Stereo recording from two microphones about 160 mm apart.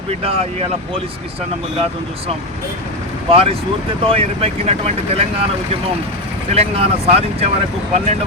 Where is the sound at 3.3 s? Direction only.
35° right (ahead or behind).